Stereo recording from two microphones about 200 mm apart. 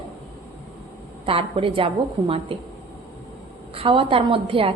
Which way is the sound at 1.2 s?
30° right (ahead or behind).